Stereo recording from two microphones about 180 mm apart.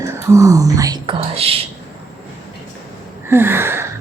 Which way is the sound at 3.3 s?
15° right (ahead or behind).